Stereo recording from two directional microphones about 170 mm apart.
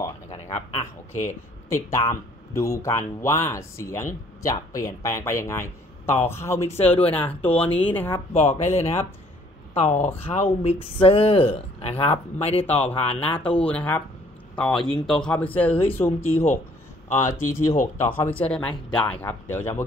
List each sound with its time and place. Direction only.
0.3 s a sound: 40° left (ahead or behind)
1.7 s speech: 15° left (ahead or behind)
6.8 s speech: 35° left (ahead or behind)
7.8 s speech: 10° left (ahead or behind)
8.4 s speech: 45° left (ahead or behind)
13.7 s speech: 10° left (ahead or behind)